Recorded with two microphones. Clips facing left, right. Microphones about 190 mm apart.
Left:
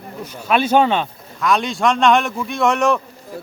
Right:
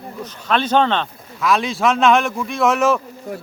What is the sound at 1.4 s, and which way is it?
Speech, centre (ahead or behind).